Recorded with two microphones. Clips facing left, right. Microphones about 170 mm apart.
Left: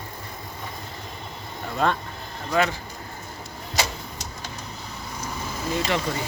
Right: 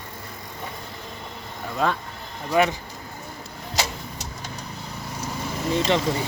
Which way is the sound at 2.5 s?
15° right (ahead or behind).